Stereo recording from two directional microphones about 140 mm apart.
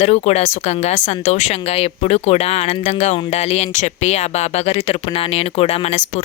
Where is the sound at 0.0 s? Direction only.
50° left (ahead or behind).